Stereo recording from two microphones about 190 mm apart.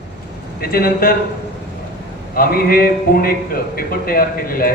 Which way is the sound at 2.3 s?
50° left (ahead or behind).